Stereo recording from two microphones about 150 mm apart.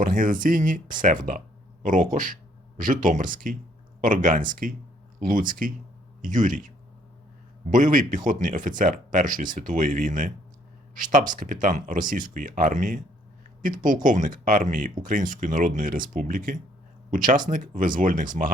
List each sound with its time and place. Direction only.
0.0 s speech: 65° right (ahead or behind)
7.7 s speech: 65° right (ahead or behind)